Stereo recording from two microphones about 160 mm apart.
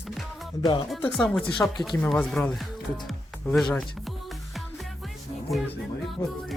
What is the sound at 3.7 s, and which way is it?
Music, centre (ahead or behind).